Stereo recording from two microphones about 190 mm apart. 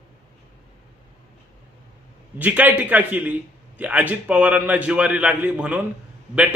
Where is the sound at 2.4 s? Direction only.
10° right (ahead or behind).